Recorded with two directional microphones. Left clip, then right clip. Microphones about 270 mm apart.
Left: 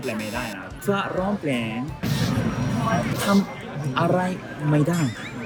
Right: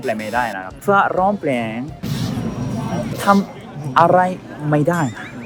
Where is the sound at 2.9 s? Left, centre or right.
Centre.